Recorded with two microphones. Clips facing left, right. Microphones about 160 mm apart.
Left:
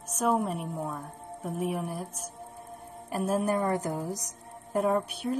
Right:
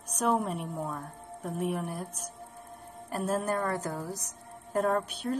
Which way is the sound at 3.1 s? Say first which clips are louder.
Left 3 dB; 10° left (ahead or behind).